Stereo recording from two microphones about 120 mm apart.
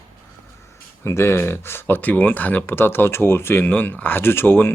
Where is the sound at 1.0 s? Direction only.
20° left (ahead or behind).